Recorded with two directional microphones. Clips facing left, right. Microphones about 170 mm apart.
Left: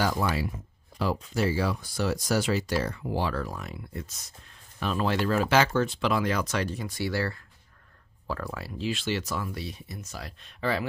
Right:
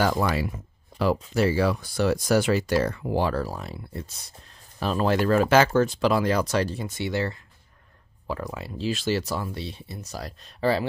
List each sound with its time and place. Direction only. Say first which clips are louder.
0.0 s speech: right 4 dB; 55° right (ahead or behind)
3.3 s speech: right 4 dB; 30° right (ahead or behind)
8.8 s speech: right 4 dB; 40° right (ahead or behind)